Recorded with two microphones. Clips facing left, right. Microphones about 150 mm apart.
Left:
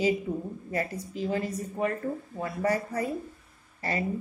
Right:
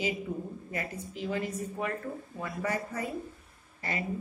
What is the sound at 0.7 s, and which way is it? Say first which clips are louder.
Speech: left 9 dB; 35° left (ahead or behind).